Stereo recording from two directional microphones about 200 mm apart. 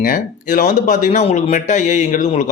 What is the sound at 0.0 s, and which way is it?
Speech, 45° left (ahead or behind).